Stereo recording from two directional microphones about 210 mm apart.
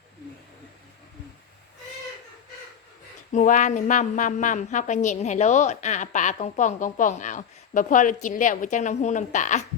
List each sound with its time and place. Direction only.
3.3 s a woman's voice: 35° left (ahead or behind)